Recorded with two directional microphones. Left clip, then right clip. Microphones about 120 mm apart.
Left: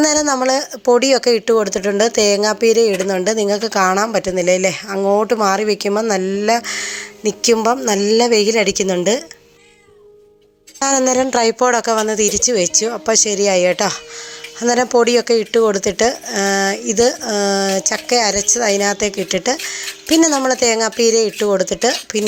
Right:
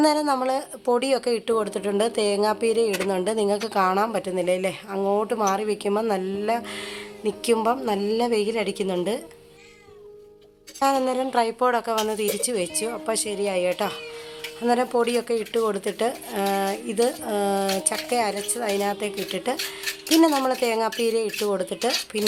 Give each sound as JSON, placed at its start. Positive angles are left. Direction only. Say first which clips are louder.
{"t": 0.0, "sound": "a sound", "louder": "left 5 dB", "side_deg": 40}
{"t": 0.4, "sound": "speech", "louder": "left 9 dB", "side_deg": 40}
{"t": 10.8, "sound": "speech", "louder": "left 7 dB", "side_deg": 50}